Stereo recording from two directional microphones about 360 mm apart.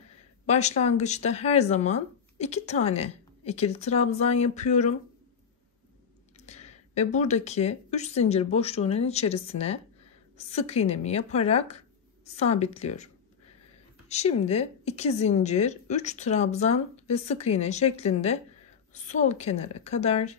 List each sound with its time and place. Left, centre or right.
0.5 s speech: centre
6.4 s speech: centre